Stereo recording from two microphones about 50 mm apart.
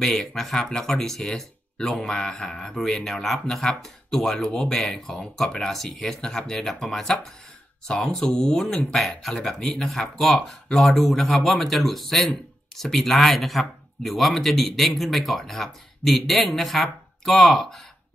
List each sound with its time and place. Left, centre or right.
0.0 s speech: centre